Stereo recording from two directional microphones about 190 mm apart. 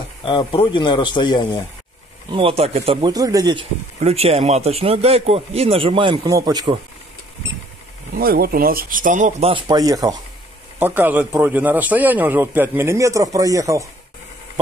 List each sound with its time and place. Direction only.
0.2 s speech: 25° left (ahead or behind)
2.3 s speech: 30° right (ahead or behind)
4.0 s speech: 35° right (ahead or behind)
8.2 s speech: 50° right (ahead or behind)
9.5 s a man's voice: 25° right (ahead or behind)